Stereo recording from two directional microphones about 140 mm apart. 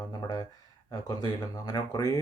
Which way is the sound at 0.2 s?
25° left (ahead or behind).